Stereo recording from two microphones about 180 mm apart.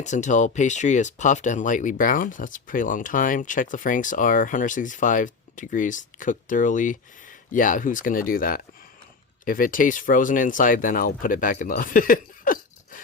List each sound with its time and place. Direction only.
0.0 s speech: 40° left (ahead or behind)